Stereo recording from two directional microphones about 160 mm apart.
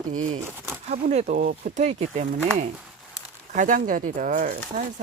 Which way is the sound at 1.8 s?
45° right (ahead or behind).